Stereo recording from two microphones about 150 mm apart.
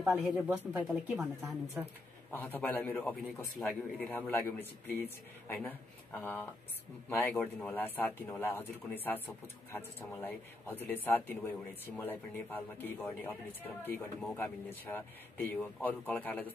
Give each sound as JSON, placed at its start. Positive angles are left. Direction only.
{"t": 0.0, "sound": "speech", "side_deg": -10}
{"t": 2.3, "sound": "speech", "side_deg": 15}
{"t": 3.6, "sound": "speech", "side_deg": 0}
{"t": 4.1, "sound": "speech", "side_deg": 15}